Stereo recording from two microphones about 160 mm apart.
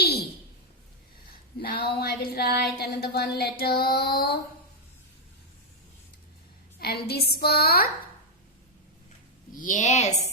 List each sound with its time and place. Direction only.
0.0 s a sound: 80° left
1.5 s a sound: 75° left (ahead or behind)
2.7 s music: 80° left
6.7 s a woman's voice: 80° left
7.3 s music: 80° left
9.5 s a woman's voice: 55° left (ahead or behind)